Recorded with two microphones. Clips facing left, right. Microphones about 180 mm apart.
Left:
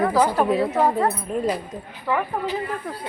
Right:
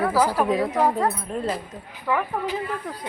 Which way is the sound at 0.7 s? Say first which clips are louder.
Left 1 dB; 10° left (ahead or behind).